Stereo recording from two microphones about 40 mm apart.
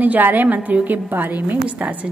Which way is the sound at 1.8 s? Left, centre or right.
Right.